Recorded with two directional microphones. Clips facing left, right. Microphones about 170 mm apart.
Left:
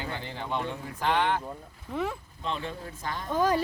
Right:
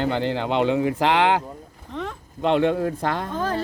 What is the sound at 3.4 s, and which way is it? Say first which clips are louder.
Speech: left 6 dB; 10° left (ahead or behind).